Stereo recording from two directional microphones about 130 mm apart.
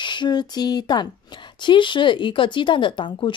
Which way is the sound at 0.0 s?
35° left (ahead or behind).